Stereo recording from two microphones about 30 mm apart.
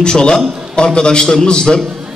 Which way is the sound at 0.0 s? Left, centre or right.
Left.